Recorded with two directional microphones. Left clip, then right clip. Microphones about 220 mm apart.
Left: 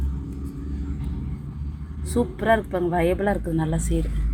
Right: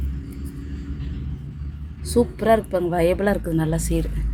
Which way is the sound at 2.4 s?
20° right (ahead or behind).